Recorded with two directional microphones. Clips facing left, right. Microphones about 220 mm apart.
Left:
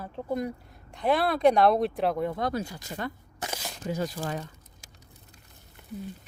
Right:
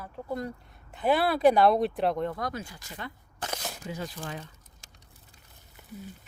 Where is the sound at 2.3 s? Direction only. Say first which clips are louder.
Left 5 dB; 25° left (ahead or behind).